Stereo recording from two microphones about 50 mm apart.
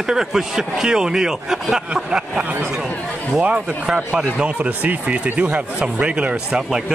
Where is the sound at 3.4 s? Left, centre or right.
Centre.